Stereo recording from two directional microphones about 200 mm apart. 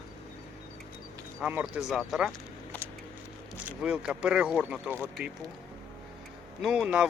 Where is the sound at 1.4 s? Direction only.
5° right (ahead or behind).